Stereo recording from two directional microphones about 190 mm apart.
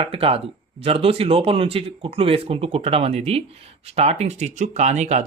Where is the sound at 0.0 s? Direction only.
30° right (ahead or behind).